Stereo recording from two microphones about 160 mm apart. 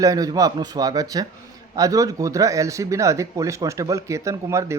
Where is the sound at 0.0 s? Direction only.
20° right (ahead or behind).